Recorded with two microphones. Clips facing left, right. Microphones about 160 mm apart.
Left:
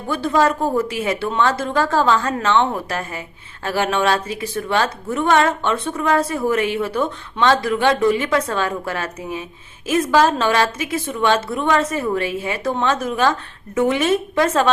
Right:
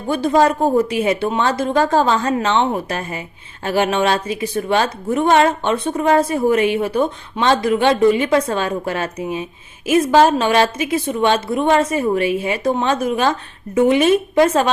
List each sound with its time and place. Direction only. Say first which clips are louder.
0.1 s a woman's voice: right 3 dB; 15° right (ahead or behind)